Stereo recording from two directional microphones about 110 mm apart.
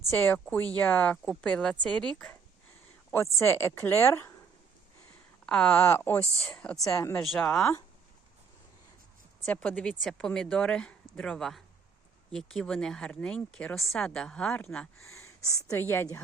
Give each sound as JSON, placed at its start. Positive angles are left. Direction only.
{"t": 0.1, "sound": "a woman's voice", "side_deg": 20}
{"t": 3.3, "sound": "a woman's voice", "side_deg": 25}
{"t": 5.5, "sound": "speech", "side_deg": 10}
{"t": 5.8, "sound": "speech", "side_deg": 20}
{"t": 6.8, "sound": "a woman's voice", "side_deg": 30}
{"t": 7.3, "sound": "speech", "side_deg": 5}
{"t": 9.5, "sound": "speech", "side_deg": 10}
{"t": 15.1, "sound": "a sound", "side_deg": 30}
{"t": 15.7, "sound": "a woman's voice", "side_deg": 20}